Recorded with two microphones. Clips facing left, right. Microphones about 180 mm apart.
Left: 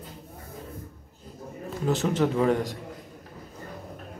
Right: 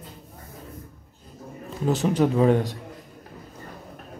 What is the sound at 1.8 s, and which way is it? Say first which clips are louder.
Speech: right 3 dB; 15° right (ahead or behind).